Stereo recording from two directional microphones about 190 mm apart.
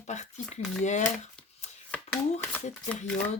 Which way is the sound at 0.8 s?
40° left (ahead or behind).